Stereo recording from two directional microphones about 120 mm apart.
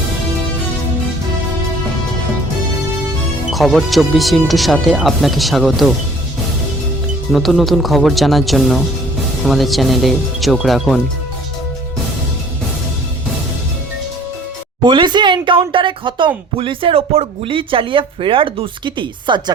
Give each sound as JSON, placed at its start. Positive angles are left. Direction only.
{"t": 3.5, "sound": "speech", "side_deg": 0}
{"t": 7.3, "sound": "speech", "side_deg": 0}
{"t": 14.8, "sound": "speech", "side_deg": -40}